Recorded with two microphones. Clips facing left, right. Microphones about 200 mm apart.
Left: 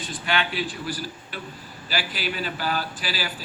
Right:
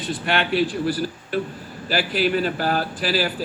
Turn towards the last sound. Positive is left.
turn(degrees=-55)  # may be behind; listen again after turning